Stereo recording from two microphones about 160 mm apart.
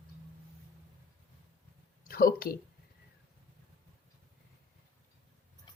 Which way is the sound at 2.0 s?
70° left (ahead or behind).